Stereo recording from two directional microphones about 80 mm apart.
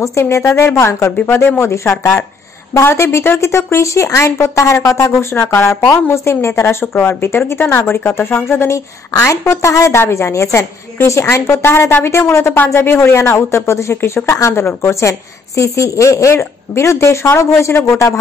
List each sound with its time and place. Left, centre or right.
0.0 s a woman's voice: left